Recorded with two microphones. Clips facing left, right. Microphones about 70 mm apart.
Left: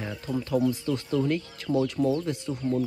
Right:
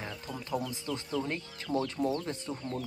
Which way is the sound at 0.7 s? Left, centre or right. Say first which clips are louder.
Left 10 dB; right.